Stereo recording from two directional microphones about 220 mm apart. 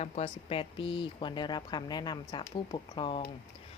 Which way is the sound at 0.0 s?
25° left (ahead or behind).